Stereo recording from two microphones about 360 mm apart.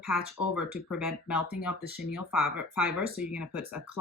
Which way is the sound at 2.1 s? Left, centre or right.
Centre.